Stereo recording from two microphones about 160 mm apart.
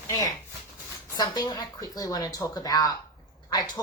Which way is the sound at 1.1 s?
25° left (ahead or behind).